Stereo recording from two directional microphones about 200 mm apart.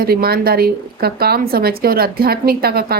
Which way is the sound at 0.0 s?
50° right (ahead or behind).